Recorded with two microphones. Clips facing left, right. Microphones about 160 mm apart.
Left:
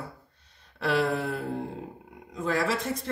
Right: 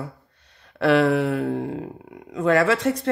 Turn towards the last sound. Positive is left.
turn(degrees=-70)  # may be behind; listen again after turning